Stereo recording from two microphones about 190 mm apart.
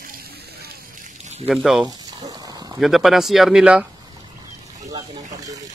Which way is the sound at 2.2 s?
20° right (ahead or behind).